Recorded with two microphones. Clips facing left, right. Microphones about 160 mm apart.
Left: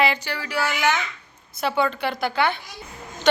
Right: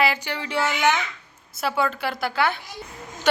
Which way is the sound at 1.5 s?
Centre (ahead or behind).